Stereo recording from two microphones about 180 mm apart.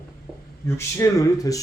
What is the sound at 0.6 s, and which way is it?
Speech, 15° left (ahead or behind).